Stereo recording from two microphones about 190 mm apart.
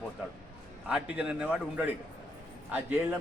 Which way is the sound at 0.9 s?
5° right (ahead or behind).